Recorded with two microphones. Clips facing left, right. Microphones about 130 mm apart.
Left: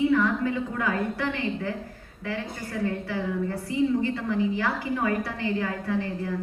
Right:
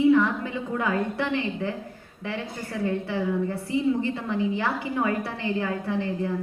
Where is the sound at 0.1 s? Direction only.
20° right (ahead or behind).